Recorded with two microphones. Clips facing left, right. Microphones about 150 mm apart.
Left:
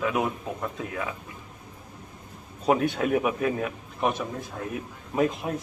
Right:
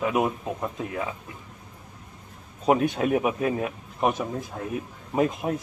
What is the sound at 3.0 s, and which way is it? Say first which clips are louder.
Speech: right 1 dB; 25° right (ahead or behind).